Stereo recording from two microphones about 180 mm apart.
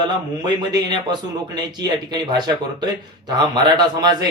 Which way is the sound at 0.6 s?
25° right (ahead or behind).